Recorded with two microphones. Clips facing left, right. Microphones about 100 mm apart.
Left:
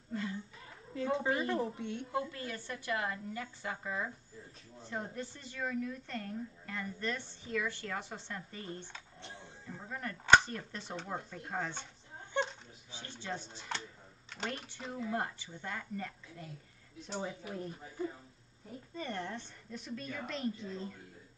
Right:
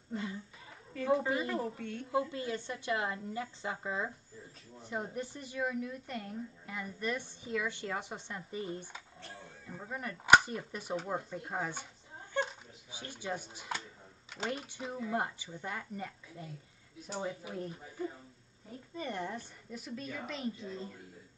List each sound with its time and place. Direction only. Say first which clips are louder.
0.1 s speech: even; 20° right (ahead or behind)
1.5 s a woman's voice: left 1 dB; 20° left (ahead or behind)
2.1 s a woman's voice: right 6 dB; 20° right (ahead or behind); by 14.9 s 5° right (ahead or behind)
14.9 s a woman's voice: right 1 dB; 15° right (ahead or behind); by 20.9 s centre (ahead or behind)